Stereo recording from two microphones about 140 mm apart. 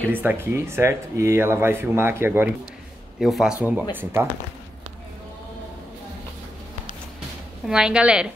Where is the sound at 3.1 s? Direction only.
5° right (ahead or behind).